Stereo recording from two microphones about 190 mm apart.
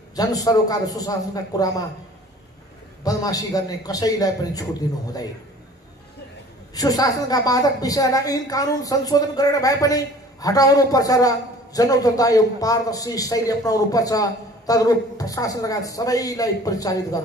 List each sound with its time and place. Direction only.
0.1 s a woman's voice: 20° left (ahead or behind)
3.0 s a woman's voice: 20° left (ahead or behind)
6.7 s a woman's voice: 20° left (ahead or behind)